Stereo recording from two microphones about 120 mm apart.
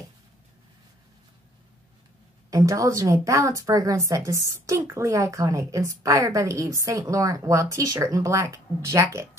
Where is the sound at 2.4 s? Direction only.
30° right (ahead or behind).